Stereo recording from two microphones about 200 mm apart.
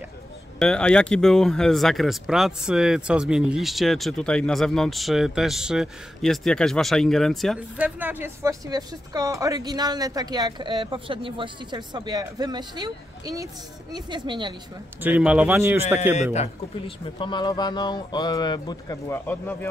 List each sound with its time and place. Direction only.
0.6 s speech: 5° left (ahead or behind); by 14.5 s 25° right (ahead or behind)
15.0 s speech: 5° right (ahead or behind)
16.3 s a man's voice: 30° left (ahead or behind); by 19.7 s 10° left (ahead or behind)